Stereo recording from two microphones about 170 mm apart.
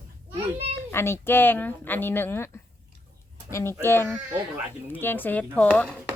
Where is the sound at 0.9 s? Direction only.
15° left (ahead or behind).